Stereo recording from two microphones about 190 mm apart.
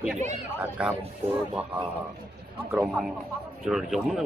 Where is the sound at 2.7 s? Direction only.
5° right (ahead or behind).